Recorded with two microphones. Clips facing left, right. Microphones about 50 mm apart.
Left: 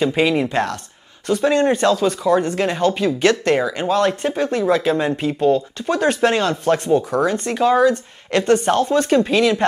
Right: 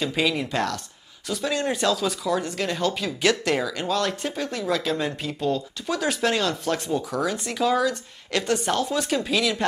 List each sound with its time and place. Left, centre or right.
0.0 s speech: left